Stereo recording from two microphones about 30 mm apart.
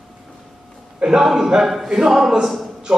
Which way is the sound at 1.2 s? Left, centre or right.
Centre.